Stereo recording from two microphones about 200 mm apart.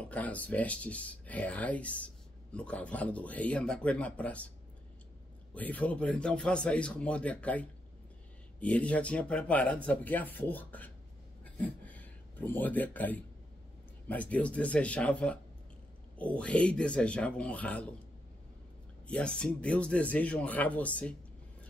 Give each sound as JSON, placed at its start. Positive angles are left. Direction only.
{"t": 0.0, "sound": "speech", "side_deg": 5}
{"t": 5.5, "sound": "speech", "side_deg": 5}
{"t": 19.0, "sound": "speech", "side_deg": 5}